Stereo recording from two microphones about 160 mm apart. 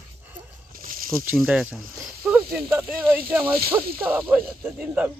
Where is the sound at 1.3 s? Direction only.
10° right (ahead or behind).